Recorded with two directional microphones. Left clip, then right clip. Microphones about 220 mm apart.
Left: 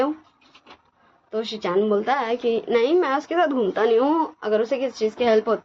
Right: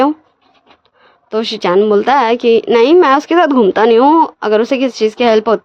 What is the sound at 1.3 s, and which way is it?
A woman's voice, 55° right (ahead or behind).